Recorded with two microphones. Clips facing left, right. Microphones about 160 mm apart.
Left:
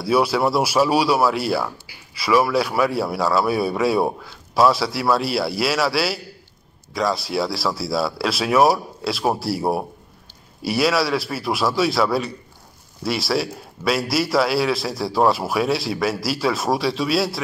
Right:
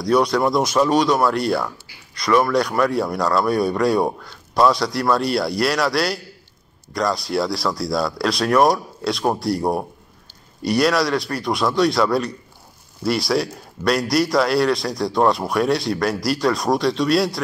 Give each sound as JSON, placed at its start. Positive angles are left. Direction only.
{"t": 0.0, "sound": "a man's voice", "side_deg": 5}